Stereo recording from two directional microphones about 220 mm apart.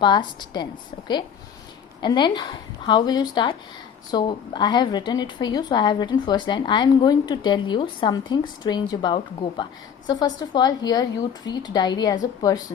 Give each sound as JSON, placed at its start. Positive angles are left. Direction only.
{"t": 0.0, "sound": "a woman's voice", "side_deg": 20}